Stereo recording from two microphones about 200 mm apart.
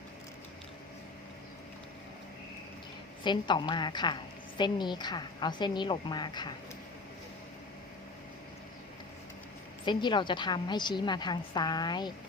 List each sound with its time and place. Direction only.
3.2 s a woman's voice: 25° left (ahead or behind)
9.8 s a woman's voice: 25° left (ahead or behind)